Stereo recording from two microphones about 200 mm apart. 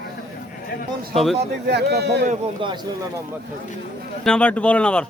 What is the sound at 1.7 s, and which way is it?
Speech, 55° right (ahead or behind).